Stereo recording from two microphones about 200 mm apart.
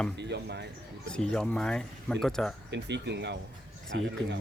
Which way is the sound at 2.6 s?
60° right (ahead or behind).